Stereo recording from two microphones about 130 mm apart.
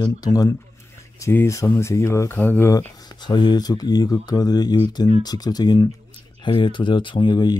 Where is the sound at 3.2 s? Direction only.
35° left (ahead or behind).